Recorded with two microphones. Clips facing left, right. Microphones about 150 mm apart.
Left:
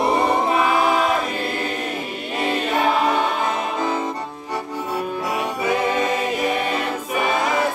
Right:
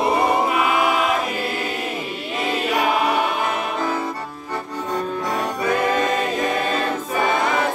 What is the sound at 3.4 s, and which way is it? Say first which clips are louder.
Music: left 1 dB; 20° left (ahead or behind).